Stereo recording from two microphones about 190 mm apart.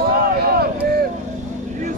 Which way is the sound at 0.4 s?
55° right (ahead or behind).